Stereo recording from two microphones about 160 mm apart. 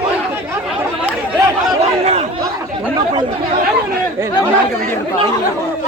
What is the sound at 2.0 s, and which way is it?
Chatter, 40° right (ahead or behind).